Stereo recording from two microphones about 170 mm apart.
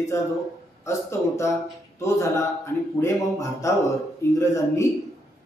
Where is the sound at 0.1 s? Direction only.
15° left (ahead or behind).